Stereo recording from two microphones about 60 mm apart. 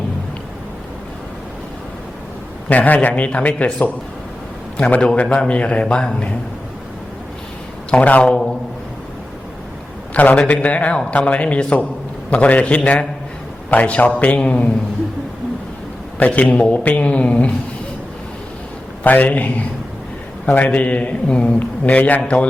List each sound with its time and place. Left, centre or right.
2.6 s a man's voice: left
7.9 s a man's voice: left
10.2 s a man's voice: left
16.1 s a man's voice: left
19.0 s a man's voice: left